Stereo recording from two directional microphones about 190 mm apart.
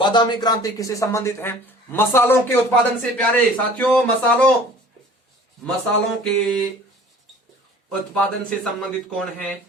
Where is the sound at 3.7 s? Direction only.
10° left (ahead or behind).